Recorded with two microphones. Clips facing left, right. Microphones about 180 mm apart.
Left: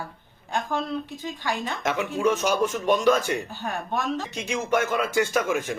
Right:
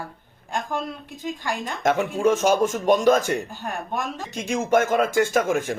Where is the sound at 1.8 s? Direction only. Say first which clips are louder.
Right 4 dB; 45° right (ahead or behind).